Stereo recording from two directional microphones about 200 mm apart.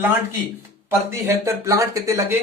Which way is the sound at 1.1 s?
15° right (ahead or behind).